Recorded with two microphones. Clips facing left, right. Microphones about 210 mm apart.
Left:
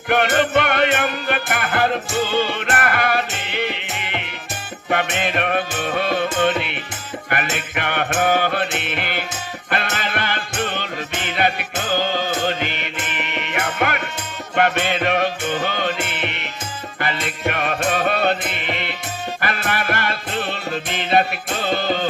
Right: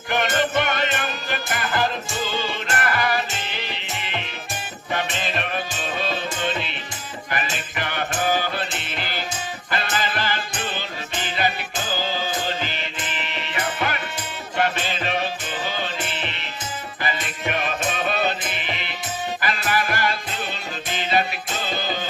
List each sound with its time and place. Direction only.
0.1 s music: 60° left (ahead or behind)